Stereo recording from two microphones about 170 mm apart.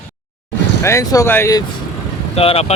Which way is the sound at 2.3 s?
35° left (ahead or behind).